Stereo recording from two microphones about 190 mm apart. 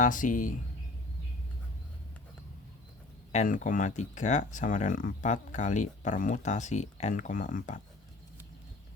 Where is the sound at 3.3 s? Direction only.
40° left (ahead or behind).